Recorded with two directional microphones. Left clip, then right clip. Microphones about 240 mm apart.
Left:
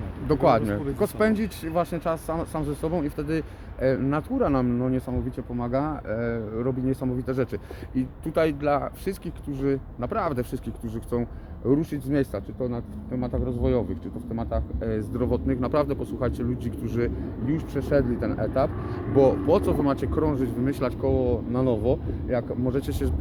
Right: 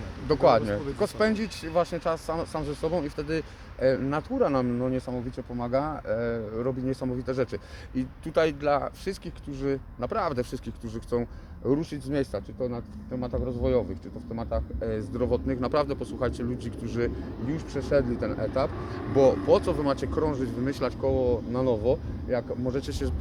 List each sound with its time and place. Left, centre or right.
0.3 s speech: centre